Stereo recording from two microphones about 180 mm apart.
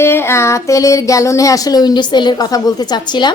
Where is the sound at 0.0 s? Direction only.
15° left (ahead or behind).